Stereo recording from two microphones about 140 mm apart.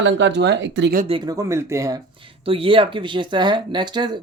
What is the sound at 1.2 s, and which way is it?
Speech, 25° right (ahead or behind).